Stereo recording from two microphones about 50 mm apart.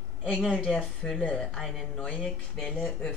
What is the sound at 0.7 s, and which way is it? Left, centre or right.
Speech, left.